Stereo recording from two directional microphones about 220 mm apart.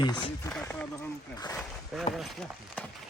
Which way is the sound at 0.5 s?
5° left (ahead or behind).